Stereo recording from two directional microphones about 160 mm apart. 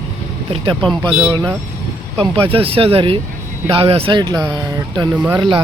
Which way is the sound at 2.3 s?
35° right (ahead or behind).